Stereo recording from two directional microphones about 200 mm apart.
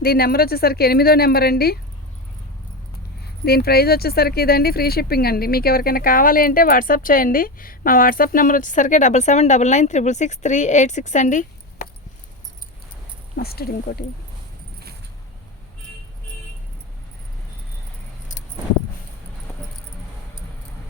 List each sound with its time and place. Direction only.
0.0 s speech: 50° left (ahead or behind)
3.4 s speech: 50° left (ahead or behind)
13.3 s speech: 50° left (ahead or behind)